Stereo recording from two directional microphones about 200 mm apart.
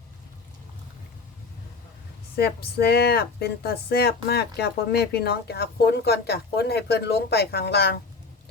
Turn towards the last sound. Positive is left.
turn(degrees=55)  # may be behind; listen again after turning